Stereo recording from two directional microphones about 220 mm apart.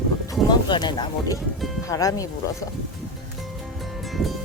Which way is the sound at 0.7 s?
20° left (ahead or behind).